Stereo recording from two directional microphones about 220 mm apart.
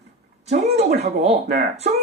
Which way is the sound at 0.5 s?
30° right (ahead or behind).